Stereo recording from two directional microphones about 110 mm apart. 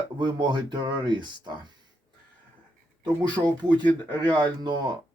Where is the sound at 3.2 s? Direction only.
40° right (ahead or behind).